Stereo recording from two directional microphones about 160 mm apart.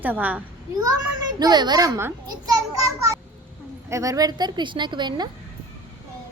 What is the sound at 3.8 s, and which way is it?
A woman's voice, 20° right (ahead or behind).